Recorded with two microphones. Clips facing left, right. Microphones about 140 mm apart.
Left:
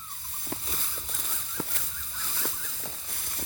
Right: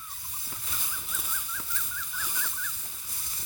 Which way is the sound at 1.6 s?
90° left.